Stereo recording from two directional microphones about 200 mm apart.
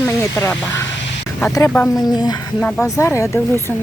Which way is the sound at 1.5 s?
10° left (ahead or behind).